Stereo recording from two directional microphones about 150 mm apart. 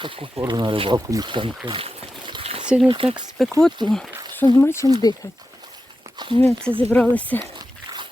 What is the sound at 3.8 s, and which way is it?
Speech, 30° right (ahead or behind).